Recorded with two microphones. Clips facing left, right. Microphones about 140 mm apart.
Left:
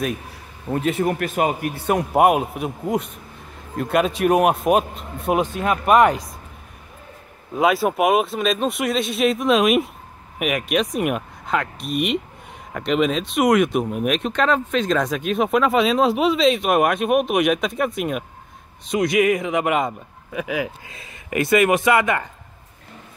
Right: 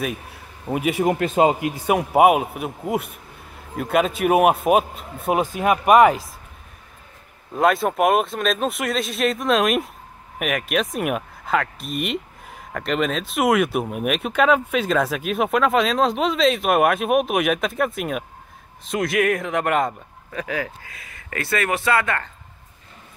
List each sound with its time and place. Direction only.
0.7 s a man's voice: 10° right (ahead or behind)
1.8 s speech: 10° right (ahead or behind)
7.5 s speech: centre (ahead or behind)